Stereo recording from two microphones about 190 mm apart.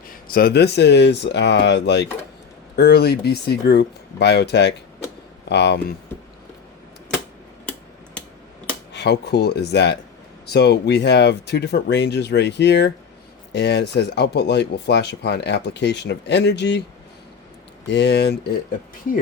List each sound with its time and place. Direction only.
0.1 s speech: 50° left (ahead or behind)
8.9 s speech: 65° left (ahead or behind)
17.8 s speech: 65° left (ahead or behind)